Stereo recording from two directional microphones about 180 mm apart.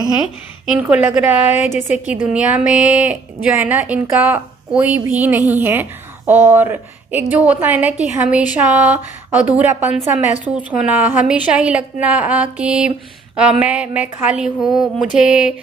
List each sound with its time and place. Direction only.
0.7 s a woman's voice: 5° right (ahead or behind)
1.6 s a woman's voice: 40° left (ahead or behind)
2.2 s a woman's voice: 5° right (ahead or behind)